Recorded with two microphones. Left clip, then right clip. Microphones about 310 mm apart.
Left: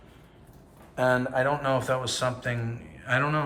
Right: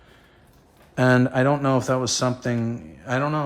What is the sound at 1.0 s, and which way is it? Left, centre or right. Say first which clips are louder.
A man's voice: right 4 dB; right.